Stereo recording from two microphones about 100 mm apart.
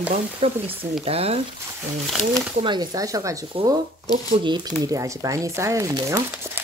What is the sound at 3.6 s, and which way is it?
Speech, 70° right (ahead or behind).